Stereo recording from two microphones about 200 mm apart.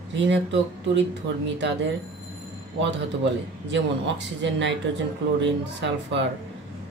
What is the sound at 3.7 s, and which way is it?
Speech, 65° right (ahead or behind).